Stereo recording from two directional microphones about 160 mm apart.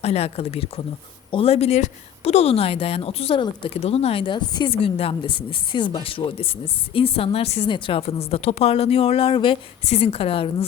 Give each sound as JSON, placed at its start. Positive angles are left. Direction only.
{"t": 0.0, "sound": "a woman's voice", "side_deg": 40}